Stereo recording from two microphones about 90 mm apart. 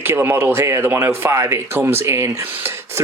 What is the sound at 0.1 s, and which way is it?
Speech, 30° right (ahead or behind).